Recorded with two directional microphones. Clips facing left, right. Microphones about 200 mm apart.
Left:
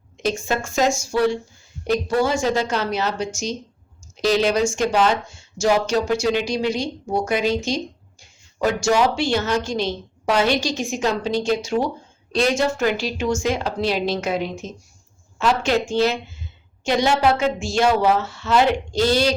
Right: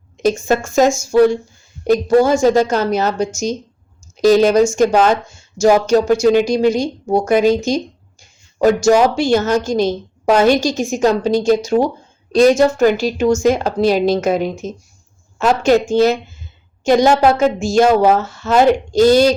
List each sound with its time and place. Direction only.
0.2 s speech: 45° right (ahead or behind)